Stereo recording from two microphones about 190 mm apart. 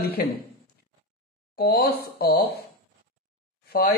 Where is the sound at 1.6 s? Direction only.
55° left (ahead or behind).